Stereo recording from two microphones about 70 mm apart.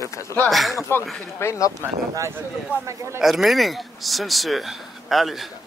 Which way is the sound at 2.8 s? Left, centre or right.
Right.